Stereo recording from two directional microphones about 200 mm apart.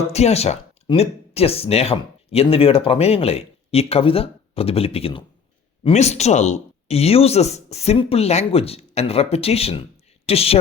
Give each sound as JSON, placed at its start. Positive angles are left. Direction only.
{"t": 0.1, "sound": "speech", "side_deg": 30}